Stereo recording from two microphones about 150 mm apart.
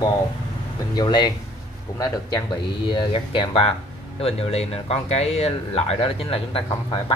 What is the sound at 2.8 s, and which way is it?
Speech, 35° left (ahead or behind).